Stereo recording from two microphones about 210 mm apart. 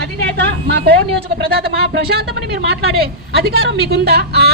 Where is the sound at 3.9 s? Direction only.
50° right (ahead or behind).